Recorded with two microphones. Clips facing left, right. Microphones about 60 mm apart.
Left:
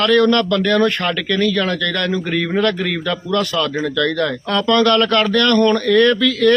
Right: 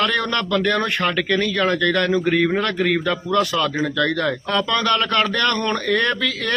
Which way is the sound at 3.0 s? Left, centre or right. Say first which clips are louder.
Even; centre.